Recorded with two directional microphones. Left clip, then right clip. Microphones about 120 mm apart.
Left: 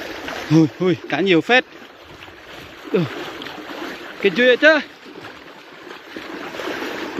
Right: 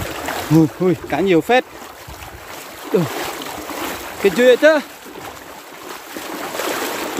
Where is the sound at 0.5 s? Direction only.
20° right (ahead or behind).